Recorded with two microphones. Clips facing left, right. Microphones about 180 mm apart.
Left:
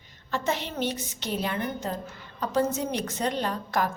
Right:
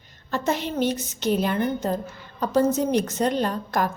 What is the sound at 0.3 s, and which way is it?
A woman's voice, 45° right (ahead or behind).